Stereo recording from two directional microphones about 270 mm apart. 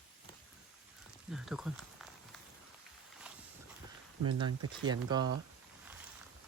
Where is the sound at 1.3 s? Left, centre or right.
Centre.